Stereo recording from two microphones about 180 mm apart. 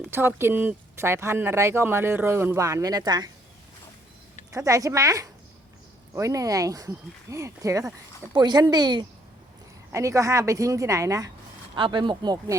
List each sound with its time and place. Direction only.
0.1 s speech: 10° right (ahead or behind)
4.5 s speech: 20° right (ahead or behind)